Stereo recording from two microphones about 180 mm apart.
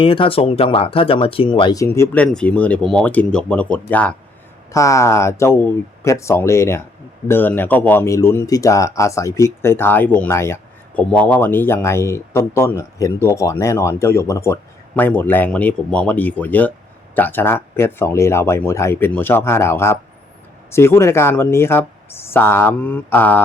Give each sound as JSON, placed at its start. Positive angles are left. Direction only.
{"t": 0.0, "sound": "speech", "side_deg": 30}